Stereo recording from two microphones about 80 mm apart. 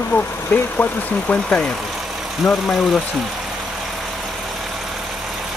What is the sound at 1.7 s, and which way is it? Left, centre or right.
Speech, centre.